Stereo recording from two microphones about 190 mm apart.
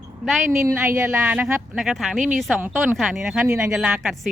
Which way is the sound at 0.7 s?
15° right (ahead or behind).